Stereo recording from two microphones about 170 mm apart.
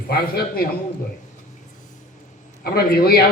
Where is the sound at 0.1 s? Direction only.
65° left (ahead or behind).